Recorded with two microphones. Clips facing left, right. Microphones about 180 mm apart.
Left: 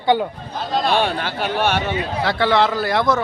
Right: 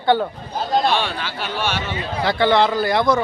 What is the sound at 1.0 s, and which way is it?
Speech, 50° left (ahead or behind).